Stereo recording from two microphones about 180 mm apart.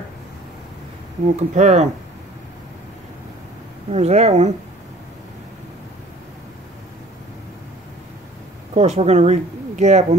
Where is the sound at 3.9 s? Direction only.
35° right (ahead or behind).